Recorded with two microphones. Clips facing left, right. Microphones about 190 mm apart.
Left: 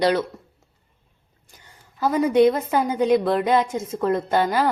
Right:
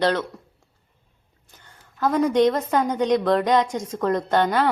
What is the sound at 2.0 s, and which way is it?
A woman's voice, 5° left (ahead or behind).